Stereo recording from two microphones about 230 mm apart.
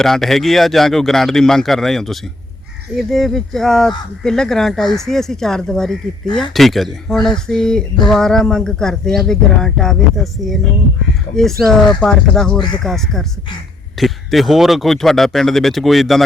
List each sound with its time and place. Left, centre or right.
0.0 s speech: centre
11.6 s speech: centre
12.5 s speech: centre
12.8 s speech: centre